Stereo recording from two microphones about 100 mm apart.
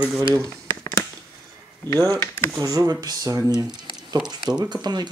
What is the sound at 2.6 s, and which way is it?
Speech, 35° right (ahead or behind).